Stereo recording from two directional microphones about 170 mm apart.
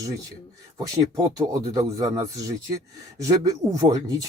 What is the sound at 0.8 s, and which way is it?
Speech, 20° right (ahead or behind).